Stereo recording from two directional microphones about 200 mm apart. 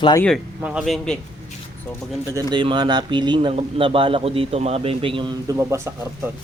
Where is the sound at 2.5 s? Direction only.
25° right (ahead or behind).